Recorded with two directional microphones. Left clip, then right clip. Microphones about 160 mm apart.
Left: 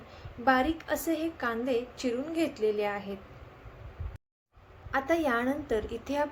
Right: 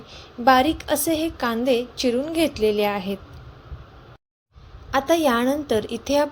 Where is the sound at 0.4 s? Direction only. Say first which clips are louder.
Right 9 dB; 50° right (ahead or behind).